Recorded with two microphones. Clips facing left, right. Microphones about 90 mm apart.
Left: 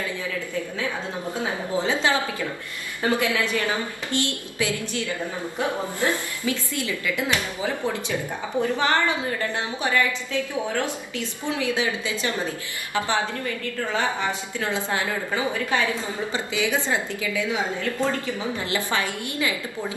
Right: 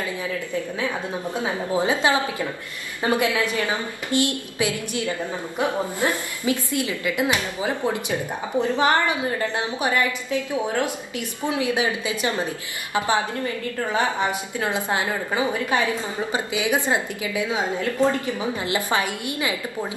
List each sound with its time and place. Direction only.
1.4 s a woman's voice: 15° right (ahead or behind)
14.6 s a woman's voice: 20° right (ahead or behind)
18.9 s a woman's voice: 20° right (ahead or behind)